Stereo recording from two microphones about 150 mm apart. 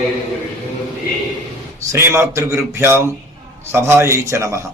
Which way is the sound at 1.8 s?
20° right (ahead or behind).